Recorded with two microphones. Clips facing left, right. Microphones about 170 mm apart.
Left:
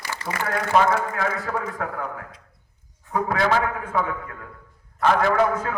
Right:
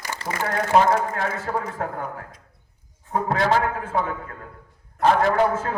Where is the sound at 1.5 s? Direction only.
30° right (ahead or behind).